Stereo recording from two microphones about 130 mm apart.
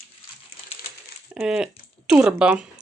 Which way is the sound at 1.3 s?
5° right (ahead or behind).